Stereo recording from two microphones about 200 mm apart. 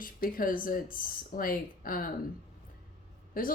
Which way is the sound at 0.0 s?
45° left (ahead or behind).